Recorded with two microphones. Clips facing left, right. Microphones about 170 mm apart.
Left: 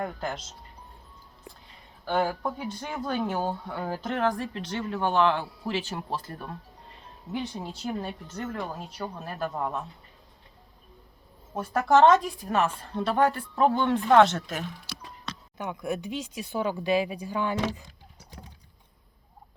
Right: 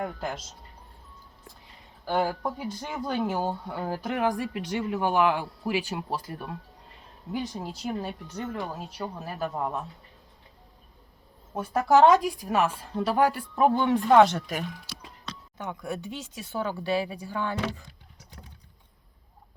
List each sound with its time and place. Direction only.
0.0 s speech: 5° right (ahead or behind)
2.4 s speech: 10° right (ahead or behind)
11.5 s speech: 10° right (ahead or behind)
15.5 s speech: 15° left (ahead or behind)